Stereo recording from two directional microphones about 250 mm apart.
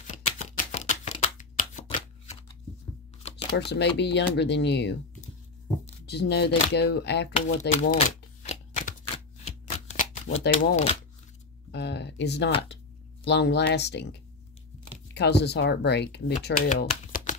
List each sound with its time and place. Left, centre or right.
0.0 s shuffling cards: left
3.7 s speech: left
6.0 s speech: left
7.7 s shuffling cards: left
10.5 s speech: left
11.7 s speech: left
15.1 s speech: left
16.4 s shuffling cards: left